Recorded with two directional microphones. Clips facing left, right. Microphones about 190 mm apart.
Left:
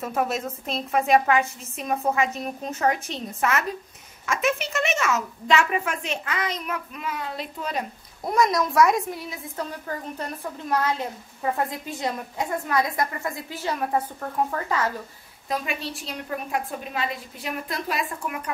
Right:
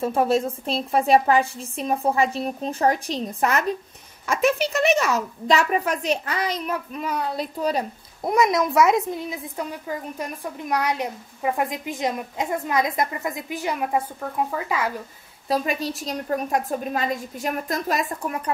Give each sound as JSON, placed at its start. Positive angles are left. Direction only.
{"t": 0.0, "sound": "a woman's voice", "side_deg": -30}
{"t": 8.5, "sound": "a woman's voice", "side_deg": -20}
{"t": 15.4, "sound": "a woman's voice", "side_deg": -35}